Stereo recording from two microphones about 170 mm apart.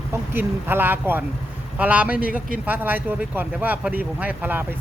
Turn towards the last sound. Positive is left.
turn(degrees=-10)  # may be behind; listen again after turning